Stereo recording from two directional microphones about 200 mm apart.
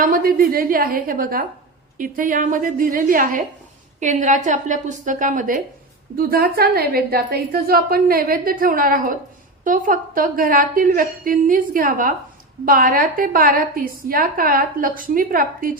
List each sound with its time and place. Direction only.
0.0 s a woman's voice: 45° right (ahead or behind)